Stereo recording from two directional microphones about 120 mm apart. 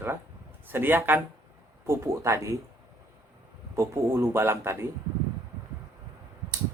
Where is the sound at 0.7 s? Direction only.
15° right (ahead or behind).